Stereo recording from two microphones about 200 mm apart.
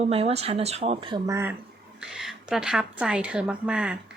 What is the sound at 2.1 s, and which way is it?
A woman's voice, centre (ahead or behind).